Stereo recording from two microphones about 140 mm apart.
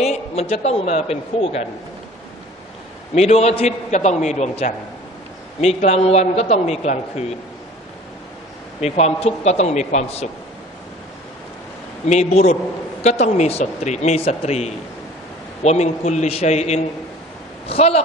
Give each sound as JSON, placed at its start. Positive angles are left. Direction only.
{"t": 0.0, "sound": "a sound", "side_deg": 50}
{"t": 0.7, "sound": "a man's voice", "side_deg": 50}
{"t": 3.2, "sound": "a man's voice", "side_deg": 50}
{"t": 8.8, "sound": "a man's voice", "side_deg": 50}
{"t": 12.1, "sound": "a man's voice", "side_deg": 55}